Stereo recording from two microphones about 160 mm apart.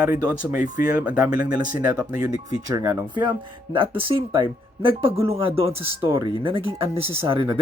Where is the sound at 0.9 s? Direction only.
10° right (ahead or behind).